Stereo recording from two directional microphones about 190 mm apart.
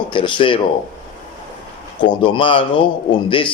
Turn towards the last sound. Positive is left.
turn(degrees=25)  # may be behind; listen again after turning